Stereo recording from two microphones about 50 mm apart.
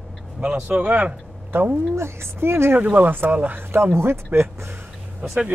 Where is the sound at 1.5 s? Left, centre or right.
Right.